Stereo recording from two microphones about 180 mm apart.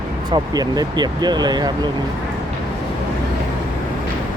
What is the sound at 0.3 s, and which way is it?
Speech, 20° right (ahead or behind).